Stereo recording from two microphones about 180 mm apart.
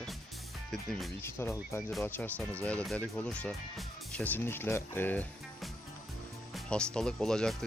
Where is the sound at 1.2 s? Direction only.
15° left (ahead or behind).